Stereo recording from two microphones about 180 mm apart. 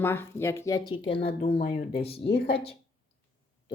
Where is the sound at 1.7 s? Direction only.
45° left (ahead or behind).